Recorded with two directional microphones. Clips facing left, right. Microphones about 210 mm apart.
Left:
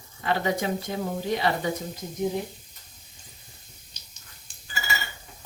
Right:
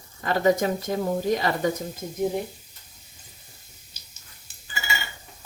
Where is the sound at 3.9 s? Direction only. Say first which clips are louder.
Even; 5° right (ahead or behind).